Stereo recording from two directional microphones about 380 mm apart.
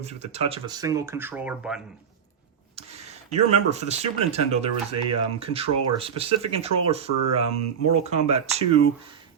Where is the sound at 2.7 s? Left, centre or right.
Centre.